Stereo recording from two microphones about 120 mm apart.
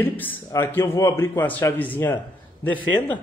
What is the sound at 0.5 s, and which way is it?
Speech, 20° left (ahead or behind).